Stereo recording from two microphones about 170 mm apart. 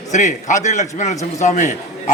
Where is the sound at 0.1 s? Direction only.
45° left (ahead or behind).